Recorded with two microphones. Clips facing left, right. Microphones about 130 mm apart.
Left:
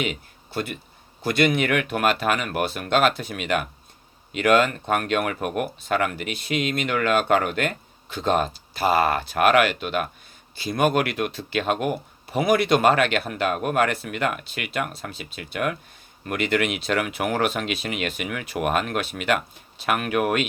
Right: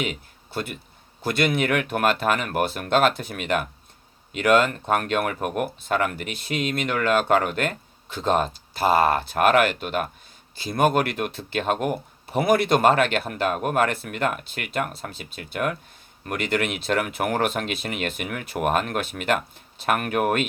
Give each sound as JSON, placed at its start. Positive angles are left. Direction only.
{"t": 0.0, "sound": "speech", "side_deg": -50}
{"t": 1.3, "sound": "a man's voice", "side_deg": 55}
{"t": 1.5, "sound": "speech", "side_deg": -50}
{"t": 6.2, "sound": "speech", "side_deg": 55}
{"t": 6.5, "sound": "speech", "side_deg": -50}